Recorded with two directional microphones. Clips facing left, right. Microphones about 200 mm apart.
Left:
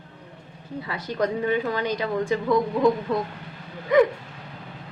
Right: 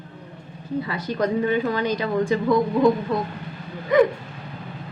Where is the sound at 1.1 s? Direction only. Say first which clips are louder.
Right 2 dB; 20° left (ahead or behind).